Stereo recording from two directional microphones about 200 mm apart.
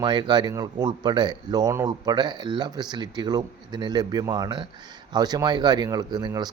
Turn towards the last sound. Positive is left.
turn(degrees=-20)  # may be behind; listen again after turning